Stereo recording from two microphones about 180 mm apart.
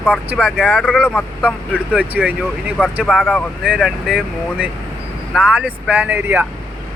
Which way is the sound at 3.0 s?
5° left (ahead or behind).